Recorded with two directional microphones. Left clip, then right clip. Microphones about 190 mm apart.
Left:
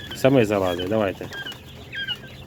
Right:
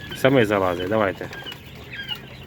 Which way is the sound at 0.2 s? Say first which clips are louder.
Right 1 dB; 25° left (ahead or behind).